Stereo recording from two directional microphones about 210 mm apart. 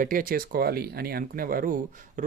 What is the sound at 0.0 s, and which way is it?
Speech, 40° right (ahead or behind).